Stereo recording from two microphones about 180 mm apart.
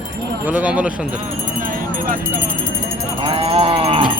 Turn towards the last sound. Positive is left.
turn(degrees=-30)  # may be behind; listen again after turning